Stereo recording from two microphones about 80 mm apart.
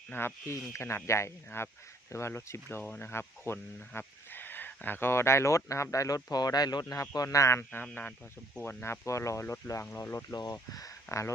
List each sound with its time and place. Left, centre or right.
0.1 s speech: left
6.3 s speech: left
7.7 s speech: left
8.6 s speech: left
10.7 s speech: left